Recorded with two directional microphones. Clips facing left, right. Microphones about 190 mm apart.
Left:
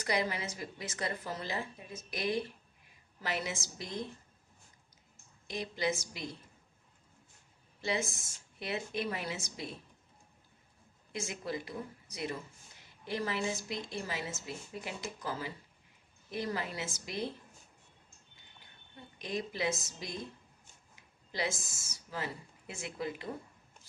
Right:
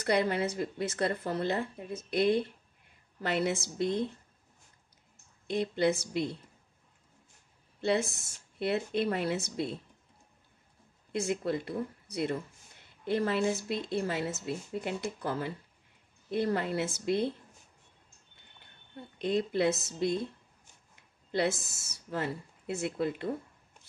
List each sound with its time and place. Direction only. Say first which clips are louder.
0.0 s speech: right 6 dB; 60° right (ahead or behind)
5.5 s speech: right 7 dB; 60° right (ahead or behind)
7.8 s speech: right 6 dB; 60° right (ahead or behind)
11.1 s speech: right 8 dB; 60° right (ahead or behind)
19.1 s speech: right 8 dB; 60° right (ahead or behind)